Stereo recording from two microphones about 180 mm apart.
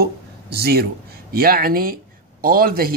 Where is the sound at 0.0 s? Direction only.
60° right (ahead or behind).